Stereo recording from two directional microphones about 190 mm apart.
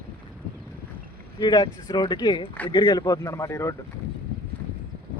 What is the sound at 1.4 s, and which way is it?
Speech, 25° left (ahead or behind).